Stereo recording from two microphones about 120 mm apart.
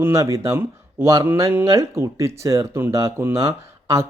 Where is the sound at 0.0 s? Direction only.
25° right (ahead or behind).